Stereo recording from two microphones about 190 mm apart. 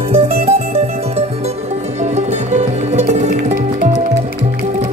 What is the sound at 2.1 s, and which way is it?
Music, 35° right (ahead or behind).